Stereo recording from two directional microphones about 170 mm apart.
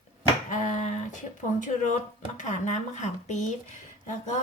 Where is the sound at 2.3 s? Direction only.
45° left (ahead or behind).